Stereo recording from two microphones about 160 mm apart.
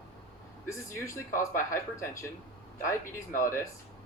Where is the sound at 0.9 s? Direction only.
20° left (ahead or behind).